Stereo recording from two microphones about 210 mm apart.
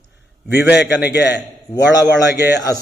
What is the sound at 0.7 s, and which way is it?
Speech, 55° left (ahead or behind).